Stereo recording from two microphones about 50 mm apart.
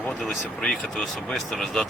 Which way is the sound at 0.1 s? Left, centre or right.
Centre.